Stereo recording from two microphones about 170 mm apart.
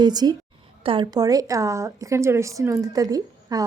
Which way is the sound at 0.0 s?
25° right (ahead or behind).